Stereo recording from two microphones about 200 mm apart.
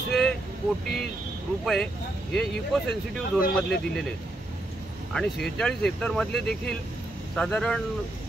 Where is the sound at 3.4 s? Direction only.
45° left (ahead or behind).